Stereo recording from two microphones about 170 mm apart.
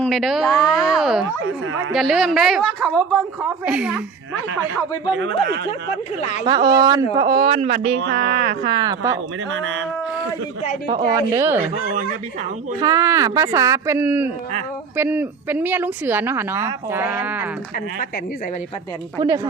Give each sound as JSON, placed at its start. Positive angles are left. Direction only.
{"t": 0.0, "sound": "a woman's voice", "side_deg": 0}
{"t": 3.7, "sound": "a woman's voice", "side_deg": -5}
{"t": 5.1, "sound": "speech", "side_deg": -80}
{"t": 6.4, "sound": "speech", "side_deg": -25}
{"t": 7.9, "sound": "speech", "side_deg": -90}
{"t": 8.6, "sound": "speech", "side_deg": -25}
{"t": 10.8, "sound": "speech", "side_deg": -25}
{"t": 12.8, "sound": "a woman's voice", "side_deg": -20}